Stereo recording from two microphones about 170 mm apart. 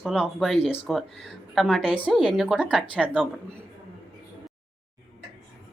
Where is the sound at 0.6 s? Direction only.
35° left (ahead or behind).